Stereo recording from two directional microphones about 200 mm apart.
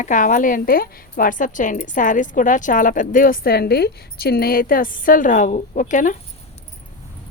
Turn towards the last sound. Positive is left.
turn(degrees=40)  # may be behind; listen again after turning